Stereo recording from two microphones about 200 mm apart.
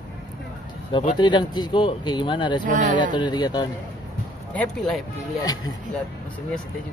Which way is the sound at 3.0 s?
25° left (ahead or behind).